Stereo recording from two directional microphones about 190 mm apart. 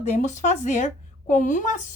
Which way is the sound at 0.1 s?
40° left (ahead or behind).